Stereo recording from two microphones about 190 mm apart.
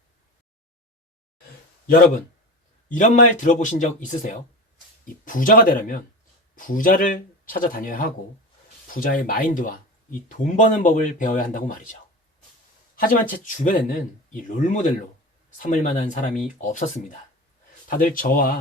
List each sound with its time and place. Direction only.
2.9 s speech: 40° left (ahead or behind)
13.0 s speech: 45° left (ahead or behind)